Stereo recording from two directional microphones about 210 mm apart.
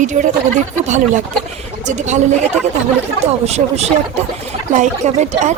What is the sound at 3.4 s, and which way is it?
Speech, 30° right (ahead or behind).